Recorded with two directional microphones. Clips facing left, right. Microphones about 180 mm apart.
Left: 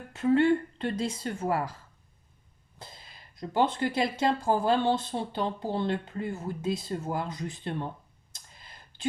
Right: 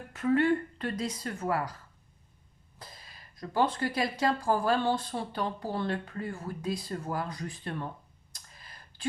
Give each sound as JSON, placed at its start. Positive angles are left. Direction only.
{"t": 0.1, "sound": "speech", "side_deg": 25}
{"t": 2.7, "sound": "speech", "side_deg": 25}
{"t": 8.3, "sound": "a sound", "side_deg": 25}